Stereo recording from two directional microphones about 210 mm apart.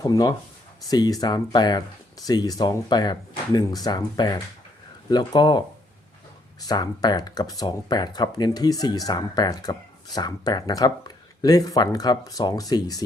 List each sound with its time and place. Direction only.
0.0 s speech: 20° left (ahead or behind)